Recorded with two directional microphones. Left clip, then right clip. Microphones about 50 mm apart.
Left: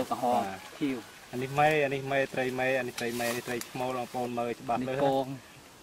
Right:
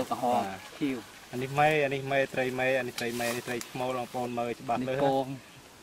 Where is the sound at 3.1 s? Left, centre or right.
Centre.